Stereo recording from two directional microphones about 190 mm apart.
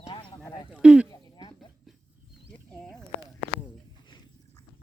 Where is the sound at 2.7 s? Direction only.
5° left (ahead or behind).